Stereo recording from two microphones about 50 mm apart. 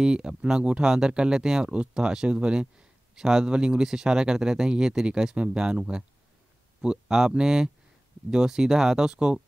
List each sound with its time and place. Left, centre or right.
0.0 s speech: centre